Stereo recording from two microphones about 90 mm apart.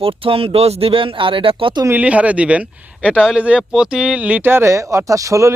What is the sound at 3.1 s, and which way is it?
Speech, 5° right (ahead or behind).